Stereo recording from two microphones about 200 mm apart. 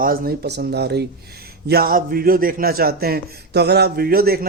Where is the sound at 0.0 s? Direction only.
50° right (ahead or behind).